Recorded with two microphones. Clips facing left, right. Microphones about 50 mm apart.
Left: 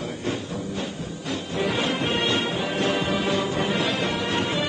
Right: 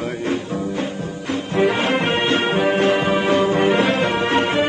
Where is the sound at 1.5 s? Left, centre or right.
Right.